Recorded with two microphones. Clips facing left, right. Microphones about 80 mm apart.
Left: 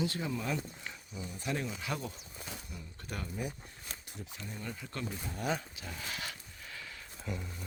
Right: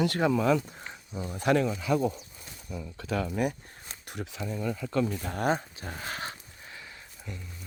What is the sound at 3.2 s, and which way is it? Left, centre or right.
Speech, right.